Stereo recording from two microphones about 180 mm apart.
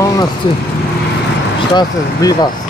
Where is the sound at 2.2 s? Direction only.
20° left (ahead or behind).